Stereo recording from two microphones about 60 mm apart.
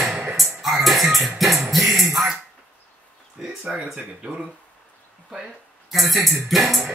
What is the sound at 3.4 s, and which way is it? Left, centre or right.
Speech, centre.